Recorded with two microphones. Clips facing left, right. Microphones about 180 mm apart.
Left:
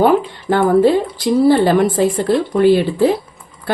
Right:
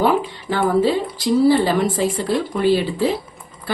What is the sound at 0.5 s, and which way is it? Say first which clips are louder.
Speech: left 5 dB; 55° left (ahead or behind).